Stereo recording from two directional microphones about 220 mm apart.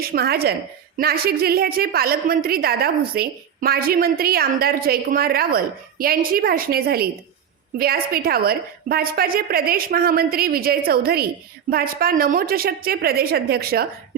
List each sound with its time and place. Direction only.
0.0 s a woman's voice: 45° right (ahead or behind)